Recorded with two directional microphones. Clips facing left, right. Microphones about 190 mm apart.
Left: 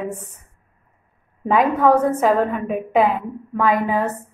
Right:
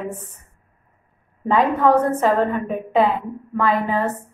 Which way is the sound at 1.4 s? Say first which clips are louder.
Left 1 dB; 10° left (ahead or behind).